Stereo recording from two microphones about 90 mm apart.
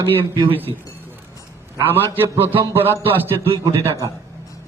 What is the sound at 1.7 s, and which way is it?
Speech, 20° right (ahead or behind).